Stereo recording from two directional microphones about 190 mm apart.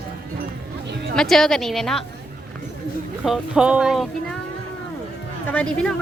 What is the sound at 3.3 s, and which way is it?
Speech, 5° right (ahead or behind).